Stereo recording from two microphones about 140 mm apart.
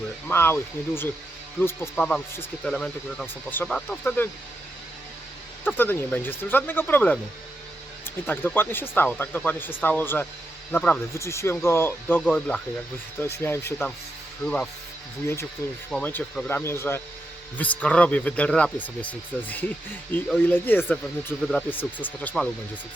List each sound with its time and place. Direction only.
0.3 s speech: 15° left (ahead or behind)
2.6 s speech: 5° left (ahead or behind)
5.6 s speech: 15° left (ahead or behind)
8.3 s speech: 15° left (ahead or behind)
15.9 s speech: 10° left (ahead or behind)